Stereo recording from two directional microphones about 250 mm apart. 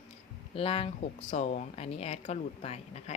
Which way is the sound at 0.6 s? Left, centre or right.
Left.